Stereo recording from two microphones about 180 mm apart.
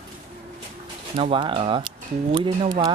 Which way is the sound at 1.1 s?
30° right (ahead or behind).